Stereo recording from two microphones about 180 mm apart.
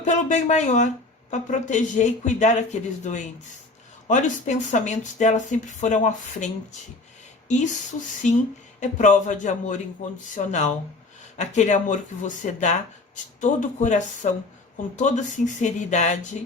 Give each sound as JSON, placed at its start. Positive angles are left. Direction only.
{"t": 0.0, "sound": "speech", "side_deg": 40}